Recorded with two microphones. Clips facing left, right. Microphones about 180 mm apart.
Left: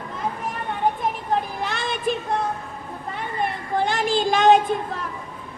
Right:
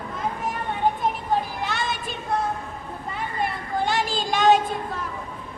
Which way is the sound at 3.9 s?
55° left (ahead or behind).